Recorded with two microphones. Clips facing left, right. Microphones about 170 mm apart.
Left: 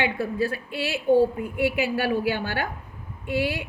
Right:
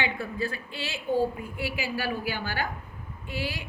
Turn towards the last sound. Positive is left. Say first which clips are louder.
# left 8 dB
turn(degrees=65)  # may be behind; listen again after turning